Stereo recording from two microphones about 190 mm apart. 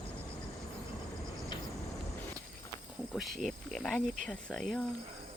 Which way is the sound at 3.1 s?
Centre (ahead or behind).